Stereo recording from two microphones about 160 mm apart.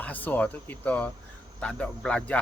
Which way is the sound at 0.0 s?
10° left (ahead or behind).